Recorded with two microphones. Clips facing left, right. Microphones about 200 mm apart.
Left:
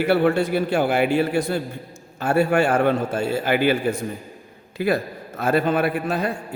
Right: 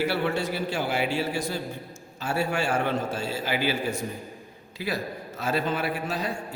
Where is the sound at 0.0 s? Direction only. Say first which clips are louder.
Left 8 dB; 55° left (ahead or behind).